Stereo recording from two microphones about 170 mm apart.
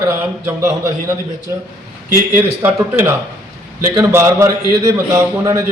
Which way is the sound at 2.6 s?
15° right (ahead or behind).